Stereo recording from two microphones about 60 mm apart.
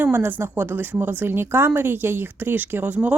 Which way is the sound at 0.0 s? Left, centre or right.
Right.